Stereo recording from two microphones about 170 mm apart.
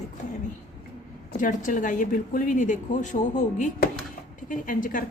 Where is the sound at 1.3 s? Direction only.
50° left (ahead or behind).